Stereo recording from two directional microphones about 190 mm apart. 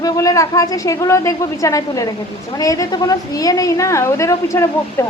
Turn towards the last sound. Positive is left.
turn(degrees=15)  # may be behind; listen again after turning